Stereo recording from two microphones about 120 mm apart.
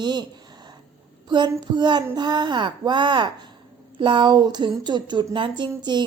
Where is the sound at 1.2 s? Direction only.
40° right (ahead or behind).